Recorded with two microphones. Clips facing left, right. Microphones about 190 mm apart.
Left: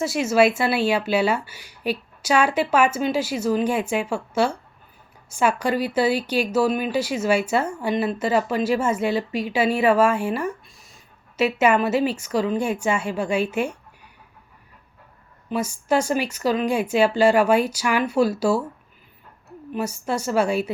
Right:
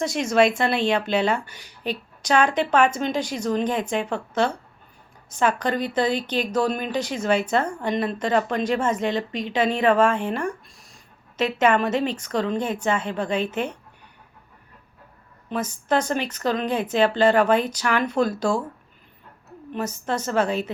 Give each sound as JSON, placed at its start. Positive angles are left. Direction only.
{"t": 0.0, "sound": "speech", "side_deg": 5}
{"t": 15.4, "sound": "speech", "side_deg": 10}
{"t": 19.7, "sound": "speech", "side_deg": 10}